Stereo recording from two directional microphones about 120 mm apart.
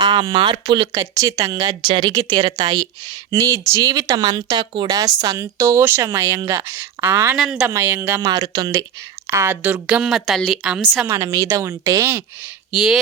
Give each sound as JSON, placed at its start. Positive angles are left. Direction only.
{"t": 0.0, "sound": "speech", "side_deg": -40}
{"t": 7.3, "sound": "speech", "side_deg": -5}
{"t": 7.7, "sound": "speech", "side_deg": -20}
{"t": 8.2, "sound": "speech", "side_deg": -35}
{"t": 9.3, "sound": "speech", "side_deg": -20}
{"t": 11.0, "sound": "speech", "side_deg": -25}
{"t": 12.7, "sound": "speech", "side_deg": -5}